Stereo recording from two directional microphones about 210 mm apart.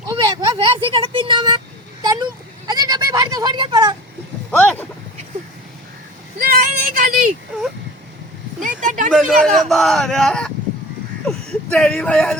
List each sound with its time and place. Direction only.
0.1 s vehicle: 20° right (ahead or behind)
2.6 s goat: 20° right (ahead or behind)
4.5 s vehicle: 5° left (ahead or behind)
6.4 s child singing: 45° right (ahead or behind)
8.6 s a sound: 40° right (ahead or behind)
9.0 s a sound: centre (ahead or behind)
9.6 s speech: centre (ahead or behind)
11.7 s speech: 5° left (ahead or behind)